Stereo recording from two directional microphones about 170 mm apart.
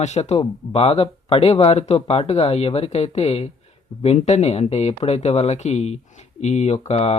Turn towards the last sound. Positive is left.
turn(degrees=40)  # may be behind; listen again after turning